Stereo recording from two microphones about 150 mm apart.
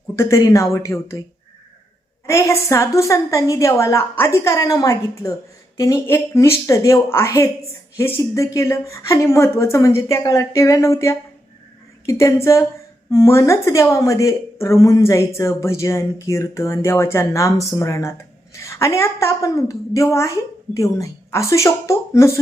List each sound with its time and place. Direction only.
0.2 s a woman's voice: 20° left (ahead or behind)
2.2 s a woman's voice: 20° left (ahead or behind)